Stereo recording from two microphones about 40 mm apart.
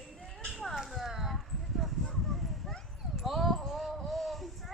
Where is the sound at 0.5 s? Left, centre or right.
Centre.